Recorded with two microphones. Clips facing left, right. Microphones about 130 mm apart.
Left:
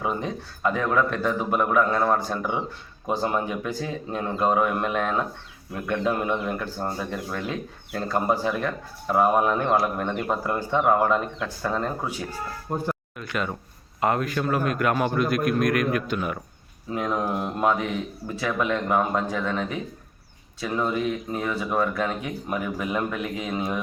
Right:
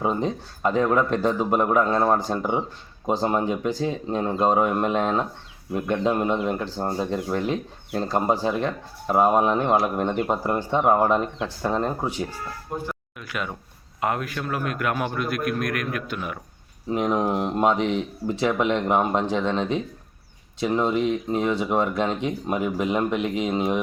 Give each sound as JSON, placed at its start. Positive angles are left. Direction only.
{"t": 0.0, "sound": "speech", "side_deg": -30}
{"t": 13.1, "sound": "a man's voice", "side_deg": -5}
{"t": 16.9, "sound": "speech", "side_deg": -20}